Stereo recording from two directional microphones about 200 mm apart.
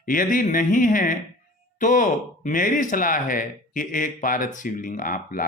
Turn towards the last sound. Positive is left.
turn(degrees=45)  # may be behind; listen again after turning